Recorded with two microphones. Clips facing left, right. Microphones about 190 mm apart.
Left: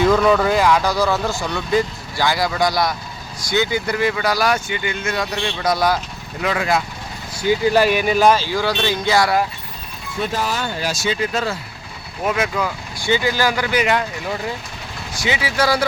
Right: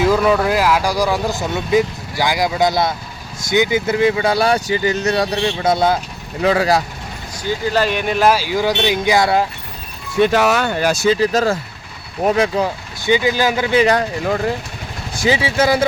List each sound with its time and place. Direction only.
0.0 s speech: 5° right (ahead or behind); by 6.0 s 25° right (ahead or behind)
6.4 s speech: 35° right (ahead or behind)
7.3 s speech: 10° left (ahead or behind); by 9.4 s 20° right (ahead or behind)
10.2 s speech: 75° right (ahead or behind)
11.1 s speech: 40° right (ahead or behind)
13.0 s speech: 15° right (ahead or behind)
13.8 s speech: 45° right (ahead or behind)
15.3 s speech: 25° right (ahead or behind)